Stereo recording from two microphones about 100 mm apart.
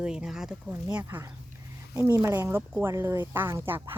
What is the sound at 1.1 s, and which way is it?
Speech, 25° right (ahead or behind).